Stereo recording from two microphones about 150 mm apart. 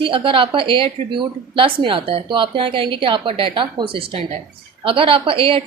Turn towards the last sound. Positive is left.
turn(degrees=-35)  # may be behind; listen again after turning